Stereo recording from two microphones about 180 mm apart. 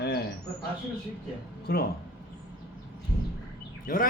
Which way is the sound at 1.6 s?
60° left (ahead or behind).